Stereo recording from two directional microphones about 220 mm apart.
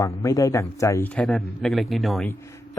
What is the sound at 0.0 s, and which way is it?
Speech, 15° left (ahead or behind).